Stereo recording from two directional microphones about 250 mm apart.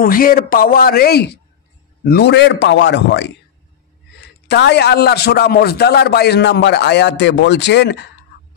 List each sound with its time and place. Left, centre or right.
0.0 s a man's voice: left